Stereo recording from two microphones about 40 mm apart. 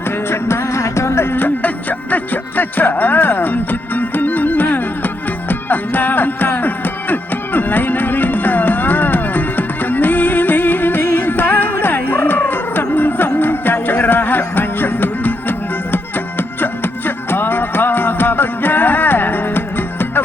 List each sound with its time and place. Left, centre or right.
0.3 s music: left
1.4 s music: left